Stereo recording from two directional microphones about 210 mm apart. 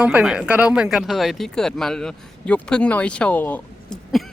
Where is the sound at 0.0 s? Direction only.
5° right (ahead or behind).